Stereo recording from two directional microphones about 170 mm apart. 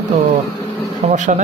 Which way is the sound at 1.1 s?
45° right (ahead or behind).